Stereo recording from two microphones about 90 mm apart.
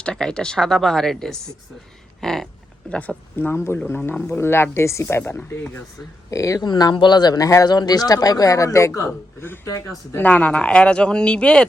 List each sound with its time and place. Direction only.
0.0 s speech: 10° left (ahead or behind); by 5.8 s 25° left (ahead or behind)
6.3 s speech: 40° left (ahead or behind)
10.2 s speech: 15° left (ahead or behind)